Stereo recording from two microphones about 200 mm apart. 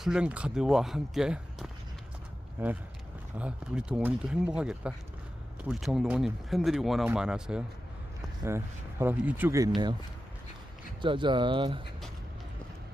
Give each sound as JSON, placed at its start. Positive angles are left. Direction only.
{"t": 0.0, "sound": "speech", "side_deg": -5}
{"t": 11.0, "sound": "speech", "side_deg": -25}